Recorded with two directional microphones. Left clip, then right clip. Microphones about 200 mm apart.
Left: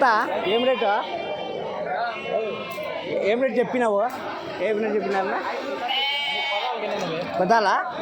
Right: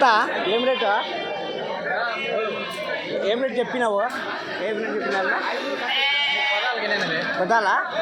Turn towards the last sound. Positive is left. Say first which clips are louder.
# even
turn(degrees=35)  # may be behind; listen again after turning